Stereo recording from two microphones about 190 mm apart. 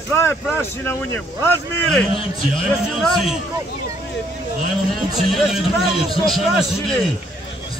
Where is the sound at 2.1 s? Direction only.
30° left (ahead or behind).